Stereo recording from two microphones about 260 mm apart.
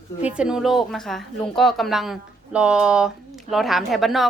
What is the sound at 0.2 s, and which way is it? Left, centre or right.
A woman's voice, centre.